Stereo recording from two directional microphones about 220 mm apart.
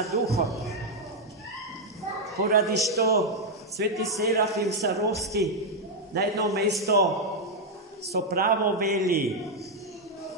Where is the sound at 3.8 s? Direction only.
45° right (ahead or behind).